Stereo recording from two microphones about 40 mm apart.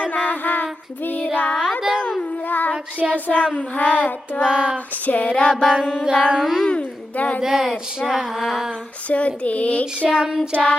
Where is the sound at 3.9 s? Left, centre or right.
Left.